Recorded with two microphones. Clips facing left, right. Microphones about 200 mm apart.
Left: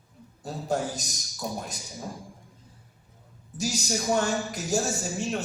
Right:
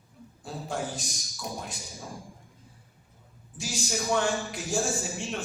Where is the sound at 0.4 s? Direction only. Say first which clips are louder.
Left 5 dB; 40° left (ahead or behind).